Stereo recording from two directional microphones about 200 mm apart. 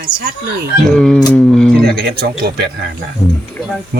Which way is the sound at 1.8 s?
50° right (ahead or behind).